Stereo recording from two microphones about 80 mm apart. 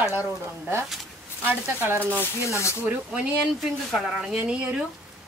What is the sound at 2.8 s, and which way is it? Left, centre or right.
Speech, centre.